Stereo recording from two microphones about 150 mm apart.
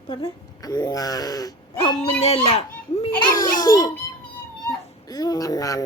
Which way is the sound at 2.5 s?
45° left (ahead or behind).